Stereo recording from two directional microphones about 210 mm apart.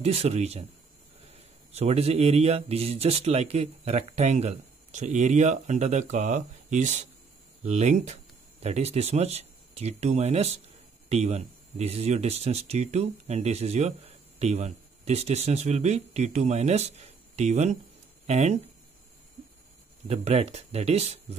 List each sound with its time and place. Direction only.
0.0 s speech: 30° right (ahead or behind)
1.7 s speech: 30° right (ahead or behind)
20.1 s speech: 30° right (ahead or behind)